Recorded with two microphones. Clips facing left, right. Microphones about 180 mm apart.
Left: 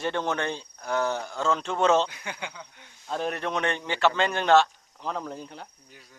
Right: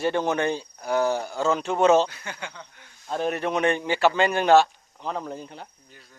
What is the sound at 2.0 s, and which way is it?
Speech, 15° left (ahead or behind).